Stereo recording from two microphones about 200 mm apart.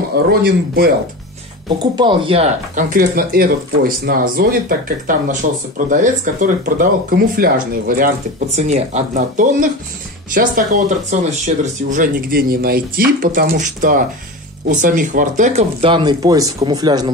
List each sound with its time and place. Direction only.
0.3 s speech: 50° right (ahead or behind)
2.0 s speech: 25° right (ahead or behind); by 8.1 s 45° right (ahead or behind)
8.5 s speech: 35° right (ahead or behind)
15.8 s speech: 25° right (ahead or behind)